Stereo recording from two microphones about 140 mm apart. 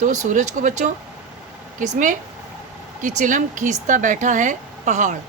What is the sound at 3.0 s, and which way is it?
A woman's voice, 65° right (ahead or behind).